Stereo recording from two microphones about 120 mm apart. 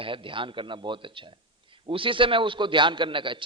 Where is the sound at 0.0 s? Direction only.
45° right (ahead or behind).